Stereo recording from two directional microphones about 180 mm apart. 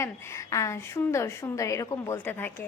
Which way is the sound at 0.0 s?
15° left (ahead or behind).